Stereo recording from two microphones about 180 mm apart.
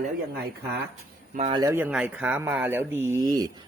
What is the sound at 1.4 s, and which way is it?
Speech, 30° right (ahead or behind).